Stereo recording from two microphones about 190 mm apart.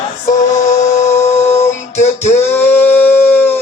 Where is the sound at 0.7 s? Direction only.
35° left (ahead or behind).